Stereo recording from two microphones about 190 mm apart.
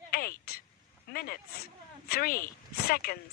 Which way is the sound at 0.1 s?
50° left (ahead or behind).